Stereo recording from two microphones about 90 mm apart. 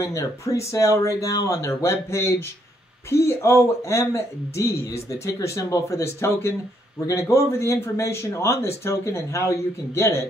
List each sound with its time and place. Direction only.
0.0 s speech: 35° left (ahead or behind)